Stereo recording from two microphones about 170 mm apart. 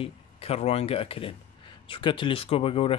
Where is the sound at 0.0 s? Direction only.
35° left (ahead or behind).